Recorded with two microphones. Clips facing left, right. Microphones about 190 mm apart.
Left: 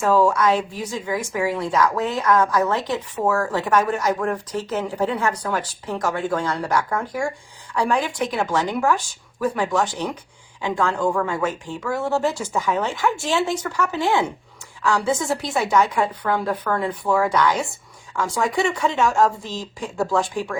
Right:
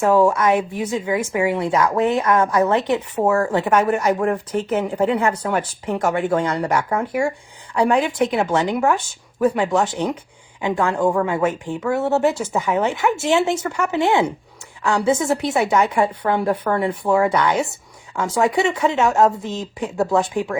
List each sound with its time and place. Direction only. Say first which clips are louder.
0.0 s speech: right 2 dB; 20° right (ahead or behind)